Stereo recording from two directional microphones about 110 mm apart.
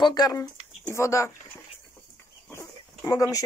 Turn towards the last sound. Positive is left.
turn(degrees=30)  # may be behind; listen again after turning